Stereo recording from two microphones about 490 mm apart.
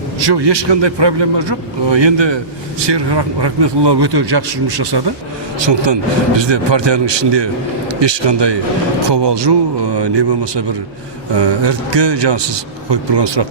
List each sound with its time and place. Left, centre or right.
0.2 s a man's voice: right
5.5 s a man's voice: right